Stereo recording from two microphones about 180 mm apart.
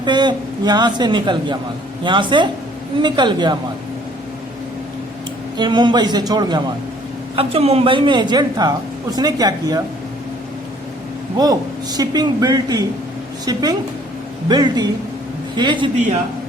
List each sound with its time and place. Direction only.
0.0 s a man's voice: 25° right (ahead or behind)
5.5 s a man's voice: 25° right (ahead or behind)
7.3 s a man's voice: 35° right (ahead or behind)
11.3 s a man's voice: 20° right (ahead or behind)